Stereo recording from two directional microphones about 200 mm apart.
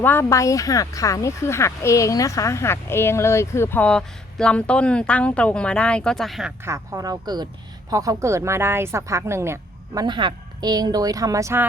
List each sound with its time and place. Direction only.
0.0 s speech: 10° left (ahead or behind)
6.6 s speech: 15° right (ahead or behind)